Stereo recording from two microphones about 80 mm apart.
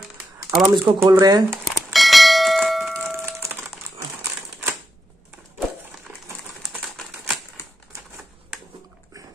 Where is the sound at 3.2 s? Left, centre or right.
Right.